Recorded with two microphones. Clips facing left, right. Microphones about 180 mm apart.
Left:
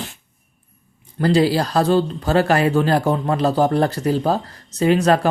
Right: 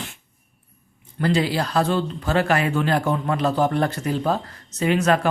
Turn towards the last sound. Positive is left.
turn(degrees=35)  # may be behind; listen again after turning